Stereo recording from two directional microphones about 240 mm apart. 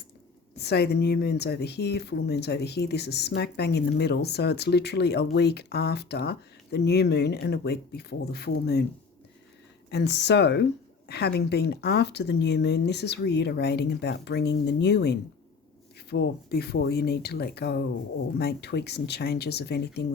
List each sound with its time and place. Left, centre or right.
0.5 s speech: left
9.9 s speech: left